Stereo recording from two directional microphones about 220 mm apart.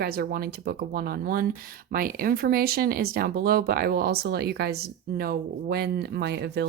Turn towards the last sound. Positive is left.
turn(degrees=-50)  # may be behind; listen again after turning